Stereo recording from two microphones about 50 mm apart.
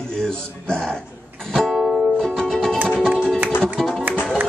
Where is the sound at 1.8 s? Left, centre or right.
Centre.